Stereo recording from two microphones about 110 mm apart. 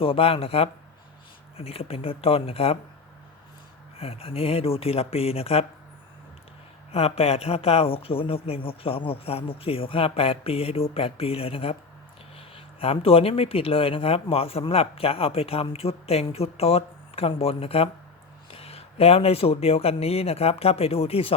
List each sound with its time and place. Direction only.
0.0 s speech: 60° left (ahead or behind)
3.9 s speech: 60° left (ahead or behind)
6.9 s speech: 65° left (ahead or behind)